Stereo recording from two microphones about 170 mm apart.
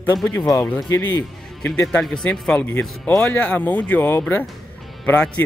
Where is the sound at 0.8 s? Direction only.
20° left (ahead or behind).